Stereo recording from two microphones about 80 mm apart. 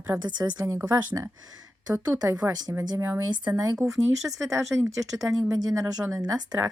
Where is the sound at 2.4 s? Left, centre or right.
Right.